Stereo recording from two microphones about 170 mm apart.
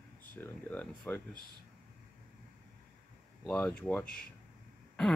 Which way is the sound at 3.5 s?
10° left (ahead or behind).